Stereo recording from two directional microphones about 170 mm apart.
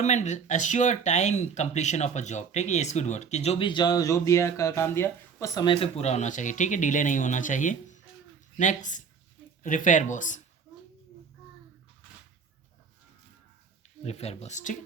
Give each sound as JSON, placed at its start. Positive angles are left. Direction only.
{"t": 0.0, "sound": "speech", "side_deg": 45}
{"t": 5.6, "sound": "speech", "side_deg": 30}
{"t": 14.0, "sound": "speech", "side_deg": 40}